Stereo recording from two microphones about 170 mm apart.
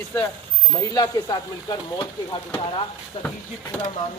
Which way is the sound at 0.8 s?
20° left (ahead or behind).